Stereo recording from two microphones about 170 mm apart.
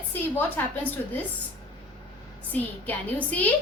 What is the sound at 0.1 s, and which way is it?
Speech, 10° left (ahead or behind).